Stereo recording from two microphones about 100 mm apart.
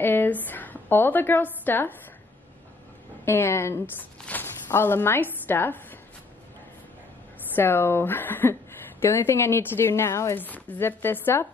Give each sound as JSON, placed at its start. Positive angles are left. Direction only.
{"t": 0.0, "sound": "a woman's voice", "side_deg": 20}
{"t": 3.3, "sound": "a woman's voice", "side_deg": 25}
{"t": 7.5, "sound": "speech", "side_deg": 20}